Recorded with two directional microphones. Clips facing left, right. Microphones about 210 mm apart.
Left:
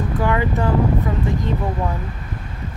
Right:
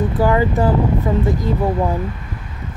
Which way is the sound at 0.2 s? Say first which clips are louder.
Right 5 dB; 35° right (ahead or behind).